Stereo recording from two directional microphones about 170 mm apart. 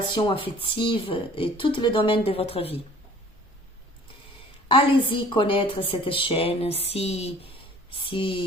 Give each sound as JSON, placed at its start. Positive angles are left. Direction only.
{"t": 0.1, "sound": "a woman's voice", "side_deg": 30}
{"t": 4.7, "sound": "a woman's voice", "side_deg": 30}